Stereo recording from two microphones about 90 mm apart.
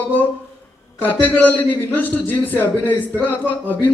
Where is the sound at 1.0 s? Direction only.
20° left (ahead or behind).